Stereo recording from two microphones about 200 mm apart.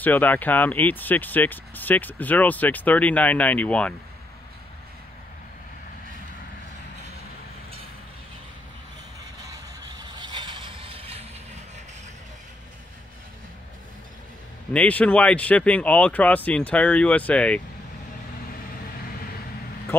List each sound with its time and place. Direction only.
0.0 s speech: 10° left (ahead or behind)
9.8 s music: 20° right (ahead or behind)
14.7 s speech: 5° left (ahead or behind)
19.9 s a man's voice: 10° left (ahead or behind)